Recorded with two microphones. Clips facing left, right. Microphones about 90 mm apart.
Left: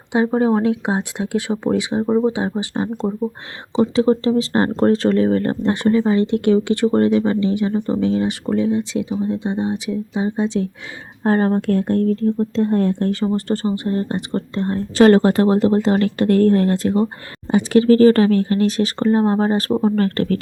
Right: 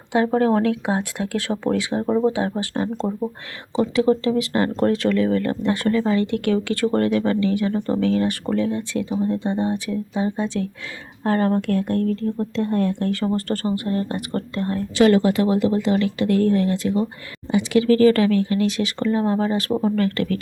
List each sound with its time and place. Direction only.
0.1 s speech: 20° left (ahead or behind)
3.8 s speech: 30° left (ahead or behind)
5.7 s speech: 20° left (ahead or behind)
14.9 s speech: 45° left (ahead or behind)